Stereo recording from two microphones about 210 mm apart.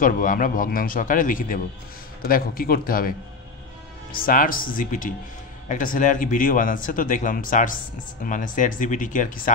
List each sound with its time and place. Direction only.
0.0 s a man's voice: 40° left (ahead or behind)
4.1 s speech: 40° left (ahead or behind)